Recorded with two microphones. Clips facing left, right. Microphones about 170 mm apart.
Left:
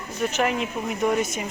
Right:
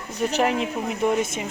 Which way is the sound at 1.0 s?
5° right (ahead or behind).